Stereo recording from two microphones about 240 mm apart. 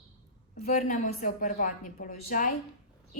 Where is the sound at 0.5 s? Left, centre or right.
Left.